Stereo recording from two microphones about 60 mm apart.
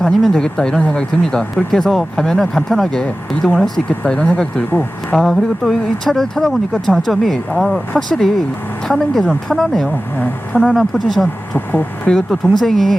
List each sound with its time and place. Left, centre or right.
0.0 s speech: centre
5.1 s speech: centre
10.2 s speech: centre
10.8 s speech: centre
11.5 s speech: left
12.3 s speech: centre